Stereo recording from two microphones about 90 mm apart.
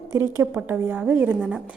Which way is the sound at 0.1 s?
30° right (ahead or behind).